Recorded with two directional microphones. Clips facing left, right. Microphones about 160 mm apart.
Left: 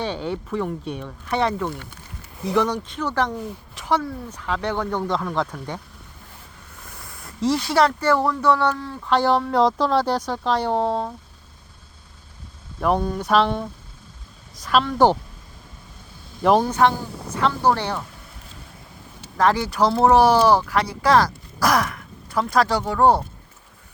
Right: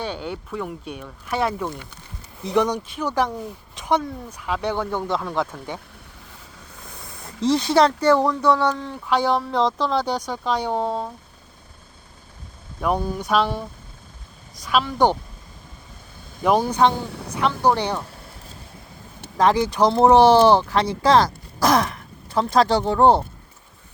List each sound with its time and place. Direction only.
0.0 s speech: centre (ahead or behind)
2.4 s speech: 20° right (ahead or behind)
6.9 s a sound: 20° right (ahead or behind)
7.4 s speech: 20° right (ahead or behind)
9.0 s speech: centre (ahead or behind)
12.8 s speech: centre (ahead or behind)
16.4 s speech: 5° right (ahead or behind)
17.3 s speech: 15° right (ahead or behind)
19.4 s speech: 20° right (ahead or behind)